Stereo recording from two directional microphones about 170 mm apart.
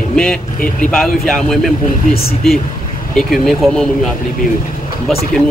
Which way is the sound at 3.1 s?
Centre (ahead or behind).